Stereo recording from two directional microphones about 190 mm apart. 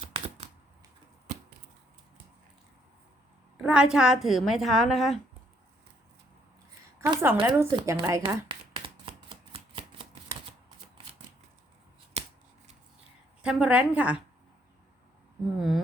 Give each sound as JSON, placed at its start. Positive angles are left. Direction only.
{"t": 3.6, "sound": "a woman's voice", "side_deg": -5}
{"t": 7.0, "sound": "a sound", "side_deg": -15}
{"t": 7.4, "sound": "a woman's voice", "side_deg": -10}
{"t": 8.3, "sound": "shuffling cards", "side_deg": -25}
{"t": 12.1, "sound": "shuffling cards", "side_deg": -35}
{"t": 13.4, "sound": "a woman's voice", "side_deg": -5}
{"t": 15.5, "sound": "speech", "side_deg": 0}